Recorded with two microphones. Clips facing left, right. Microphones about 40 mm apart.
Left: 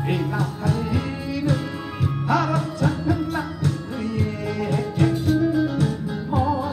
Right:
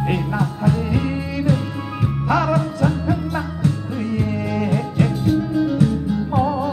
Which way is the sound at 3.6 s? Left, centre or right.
Right.